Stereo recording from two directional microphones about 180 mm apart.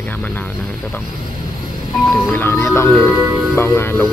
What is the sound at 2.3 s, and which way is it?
Speech, 15° left (ahead or behind).